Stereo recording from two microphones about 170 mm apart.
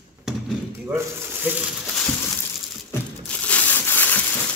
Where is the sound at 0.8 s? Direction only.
10° right (ahead or behind).